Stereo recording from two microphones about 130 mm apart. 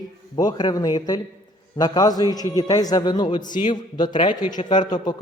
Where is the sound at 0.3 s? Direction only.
30° left (ahead or behind).